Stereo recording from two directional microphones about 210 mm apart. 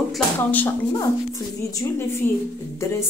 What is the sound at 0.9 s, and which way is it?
A woman's voice, 15° left (ahead or behind).